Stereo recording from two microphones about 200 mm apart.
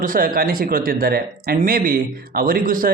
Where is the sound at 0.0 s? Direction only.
45° right (ahead or behind).